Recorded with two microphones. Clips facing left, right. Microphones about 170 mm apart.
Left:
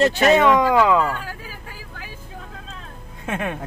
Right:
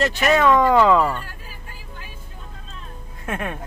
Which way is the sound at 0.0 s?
30° left (ahead or behind).